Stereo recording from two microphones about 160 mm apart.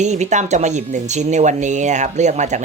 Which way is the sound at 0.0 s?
45° right (ahead or behind).